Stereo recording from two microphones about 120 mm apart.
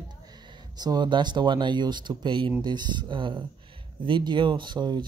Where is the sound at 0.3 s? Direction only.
35° right (ahead or behind).